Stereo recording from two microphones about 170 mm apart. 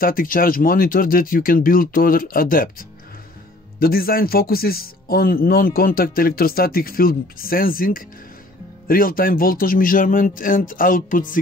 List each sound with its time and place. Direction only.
0.0 s speech: 55° left (ahead or behind)
3.8 s speech: 60° left (ahead or behind)